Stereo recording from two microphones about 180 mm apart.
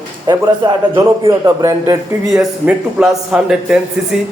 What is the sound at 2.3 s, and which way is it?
A man's voice, centre (ahead or behind).